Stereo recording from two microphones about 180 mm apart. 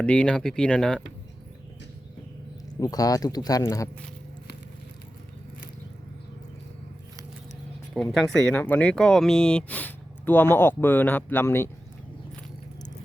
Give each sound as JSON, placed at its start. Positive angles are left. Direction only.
{"t": 0.0, "sound": "speech", "side_deg": 5}
{"t": 2.8, "sound": "speech", "side_deg": 20}
{"t": 8.1, "sound": "speech", "side_deg": 0}